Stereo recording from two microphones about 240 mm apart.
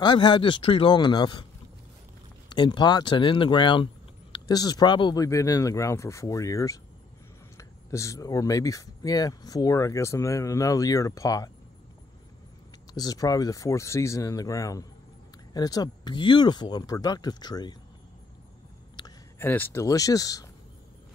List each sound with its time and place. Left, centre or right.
0.0 s a man's voice: centre
2.5 s speech: centre
12.9 s speech: centre
18.9 s speech: centre